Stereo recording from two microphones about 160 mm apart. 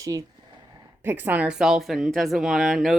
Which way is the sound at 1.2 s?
10° right (ahead or behind).